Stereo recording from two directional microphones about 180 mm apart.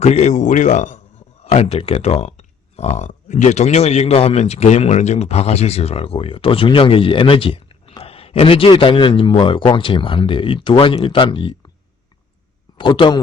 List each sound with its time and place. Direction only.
0.0 s a man's voice: 35° left (ahead or behind)
12.7 s a man's voice: 25° left (ahead or behind)